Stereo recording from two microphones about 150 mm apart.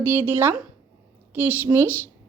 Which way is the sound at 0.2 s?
15° right (ahead or behind).